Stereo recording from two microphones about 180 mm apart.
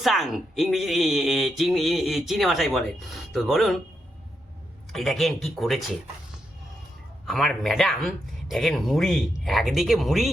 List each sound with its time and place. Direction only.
0.0 s speech: centre (ahead or behind)
4.9 s speech: centre (ahead or behind)
7.3 s speech: centre (ahead or behind)